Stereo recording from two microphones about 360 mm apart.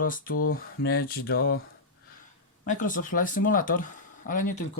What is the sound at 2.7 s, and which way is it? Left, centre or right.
Speech, left.